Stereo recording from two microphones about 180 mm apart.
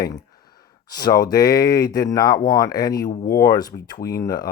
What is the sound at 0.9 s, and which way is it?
Speech, 20° left (ahead or behind).